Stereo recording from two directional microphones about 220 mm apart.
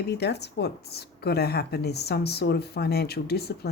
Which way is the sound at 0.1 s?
50° left (ahead or behind).